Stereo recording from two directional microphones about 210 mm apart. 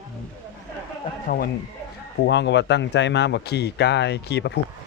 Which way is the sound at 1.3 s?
45° left (ahead or behind).